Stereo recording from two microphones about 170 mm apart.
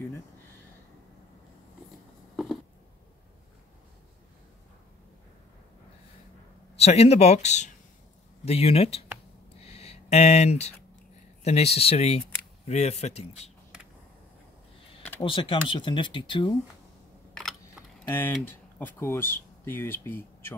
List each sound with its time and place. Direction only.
2.3 s a sound: centre (ahead or behind)
6.8 s speech: 35° left (ahead or behind)
9.7 s a sound: 40° left (ahead or behind)
11.4 s speech: 40° left (ahead or behind)
15.2 s speech: 30° left (ahead or behind)
17.3 s computer keyboard: centre (ahead or behind)
18.8 s speech: 15° left (ahead or behind)